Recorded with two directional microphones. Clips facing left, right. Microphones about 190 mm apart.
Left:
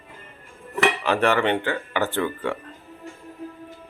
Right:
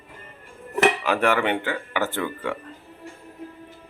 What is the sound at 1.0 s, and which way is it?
Speech, 10° right (ahead or behind).